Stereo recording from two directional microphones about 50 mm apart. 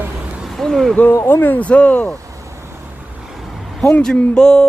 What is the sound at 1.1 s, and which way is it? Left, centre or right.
Speech, left.